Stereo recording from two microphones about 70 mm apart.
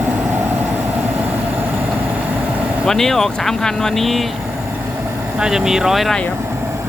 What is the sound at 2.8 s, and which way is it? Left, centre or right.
Speech, centre.